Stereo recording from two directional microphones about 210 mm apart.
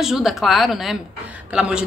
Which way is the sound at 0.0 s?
Centre (ahead or behind).